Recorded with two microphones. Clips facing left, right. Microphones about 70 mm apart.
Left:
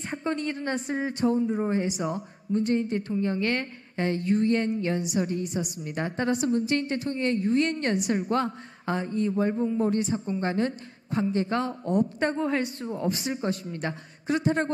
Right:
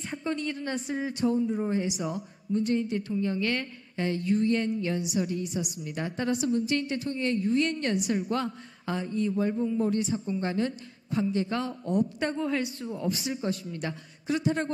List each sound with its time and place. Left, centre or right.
0.1 s speech: left